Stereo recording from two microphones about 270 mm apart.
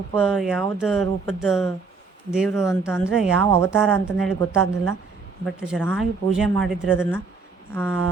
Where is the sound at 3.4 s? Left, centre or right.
Centre.